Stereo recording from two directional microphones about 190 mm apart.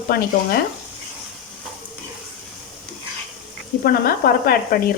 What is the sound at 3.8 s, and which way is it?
Speech, 50° left (ahead or behind).